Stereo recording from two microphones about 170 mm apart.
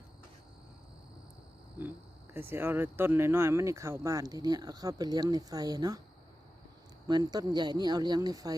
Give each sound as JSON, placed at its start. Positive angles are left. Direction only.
{"t": 2.3, "sound": "speech", "side_deg": -15}
{"t": 7.1, "sound": "speech", "side_deg": -25}